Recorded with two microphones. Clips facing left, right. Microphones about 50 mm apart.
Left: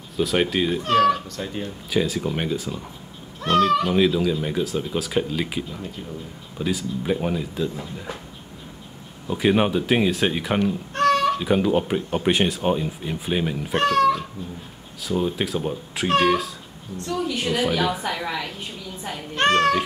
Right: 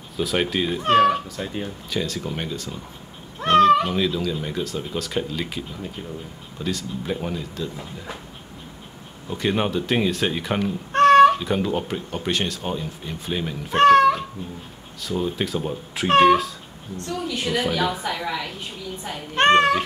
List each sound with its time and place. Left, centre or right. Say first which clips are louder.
0.2 s speech: left 2 dB; centre
0.8 s speech: right 2 dB; right
1.3 s speech: even; centre
1.9 s speech: left 6 dB; centre
3.3 s cat: right 4 dB; right
3.9 s speech: left 4 dB; centre
6.6 s speech: left 3 dB; centre
9.3 s speech: left 3 dB; centre
10.9 s cat: right 8 dB; right
11.4 s speech: left 4 dB; centre
13.7 s speech: right 5 dB; right
15.0 s speech: left 1 dB; centre
17.3 s speech: even; centre
19.3 s speech: right 3 dB; right